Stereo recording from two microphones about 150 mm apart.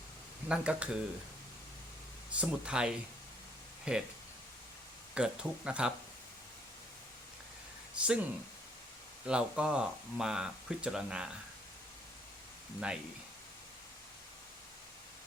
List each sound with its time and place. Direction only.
0.4 s speech: 5° right (ahead or behind)
2.3 s speech: 5° right (ahead or behind)
5.1 s speech: 5° right (ahead or behind)
8.0 s speech: 10° right (ahead or behind)
9.2 s speech: 5° right (ahead or behind)